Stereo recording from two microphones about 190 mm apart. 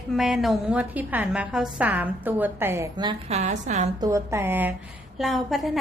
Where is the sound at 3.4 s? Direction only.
40° right (ahead or behind).